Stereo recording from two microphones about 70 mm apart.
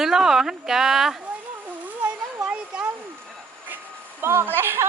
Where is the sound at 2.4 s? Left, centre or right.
Centre.